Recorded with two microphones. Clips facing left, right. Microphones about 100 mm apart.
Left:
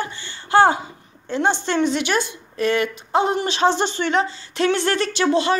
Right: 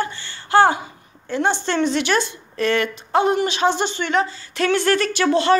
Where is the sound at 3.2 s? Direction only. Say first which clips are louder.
Even; 30° left (ahead or behind).